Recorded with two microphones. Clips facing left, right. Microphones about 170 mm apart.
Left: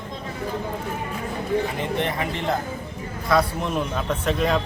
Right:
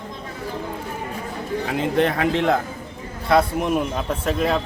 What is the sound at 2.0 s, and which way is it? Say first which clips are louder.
Speech: right 6 dB; 90° right.